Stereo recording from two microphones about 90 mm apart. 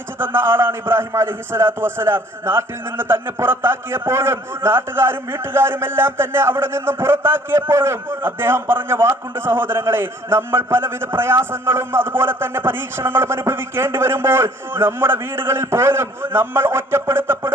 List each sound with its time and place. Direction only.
0.2 s a man's voice: 25° right (ahead or behind)